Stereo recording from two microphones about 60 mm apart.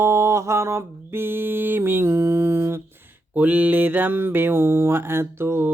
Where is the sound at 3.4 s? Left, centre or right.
Right.